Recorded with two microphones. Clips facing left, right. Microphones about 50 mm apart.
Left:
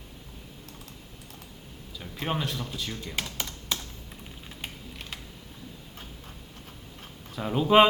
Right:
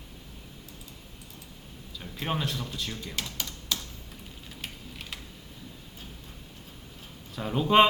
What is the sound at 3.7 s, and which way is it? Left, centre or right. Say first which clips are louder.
Computer keyboard: even; left.